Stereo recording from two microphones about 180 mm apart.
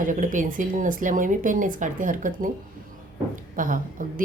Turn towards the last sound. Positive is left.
turn(degrees=-50)  # may be behind; listen again after turning